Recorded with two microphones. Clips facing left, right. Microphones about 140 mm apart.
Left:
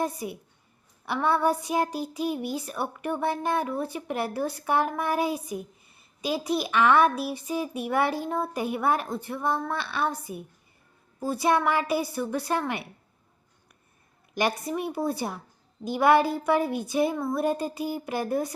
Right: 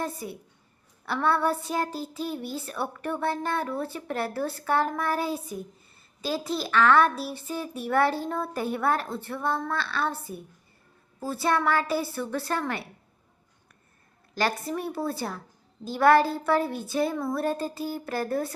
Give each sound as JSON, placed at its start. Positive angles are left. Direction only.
{"t": 0.2, "sound": "a child's voice", "side_deg": 15}
{"t": 14.7, "sound": "a child's voice", "side_deg": 15}